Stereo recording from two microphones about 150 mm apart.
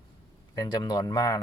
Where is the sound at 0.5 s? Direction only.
25° left (ahead or behind).